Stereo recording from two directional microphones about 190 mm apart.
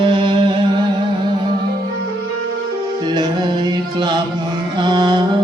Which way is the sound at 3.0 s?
20° right (ahead or behind).